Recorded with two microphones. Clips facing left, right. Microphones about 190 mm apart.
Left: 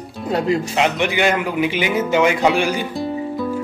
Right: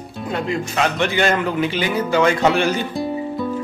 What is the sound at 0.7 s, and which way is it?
A man's voice, 15° left (ahead or behind).